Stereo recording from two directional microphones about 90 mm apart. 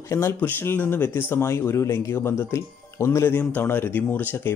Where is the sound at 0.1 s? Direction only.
30° left (ahead or behind).